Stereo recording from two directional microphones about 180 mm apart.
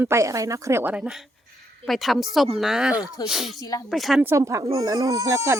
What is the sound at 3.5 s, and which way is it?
Speech, 20° left (ahead or behind).